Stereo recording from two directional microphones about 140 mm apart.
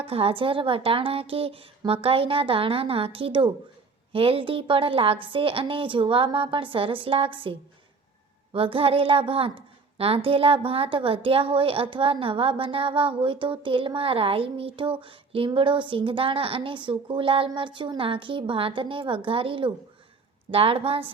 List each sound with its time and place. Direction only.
0.0 s a woman's voice: 45° right (ahead or behind)
8.5 s a woman's voice: 40° right (ahead or behind)